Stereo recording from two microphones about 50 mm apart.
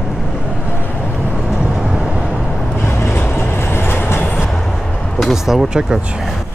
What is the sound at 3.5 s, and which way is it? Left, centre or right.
Train, left.